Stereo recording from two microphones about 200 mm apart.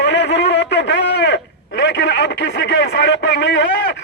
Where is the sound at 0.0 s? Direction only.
60° left (ahead or behind).